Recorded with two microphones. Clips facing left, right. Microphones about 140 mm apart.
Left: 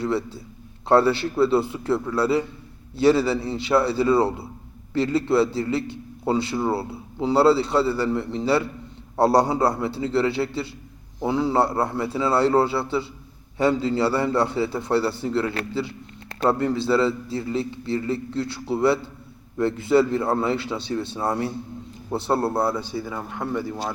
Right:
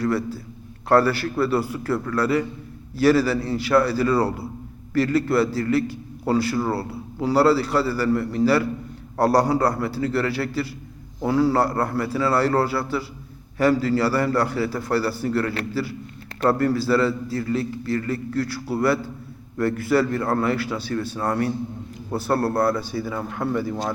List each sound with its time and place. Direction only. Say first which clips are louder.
0.0 s a man's voice: right 2 dB; 25° left (ahead or behind); by 23.6 s 5° left (ahead or behind)